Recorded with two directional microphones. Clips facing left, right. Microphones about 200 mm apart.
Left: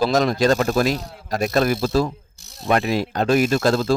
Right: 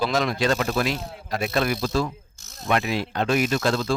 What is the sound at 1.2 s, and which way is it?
Speech, 45° left (ahead or behind).